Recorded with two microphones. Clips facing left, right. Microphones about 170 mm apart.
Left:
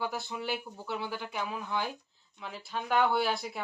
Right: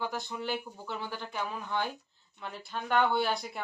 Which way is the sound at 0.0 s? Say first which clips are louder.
Even; 5° left (ahead or behind).